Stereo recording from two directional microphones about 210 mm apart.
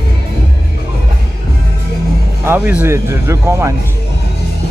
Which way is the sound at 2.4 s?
10° right (ahead or behind).